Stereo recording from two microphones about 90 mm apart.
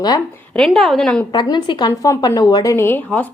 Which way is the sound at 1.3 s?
55° left (ahead or behind).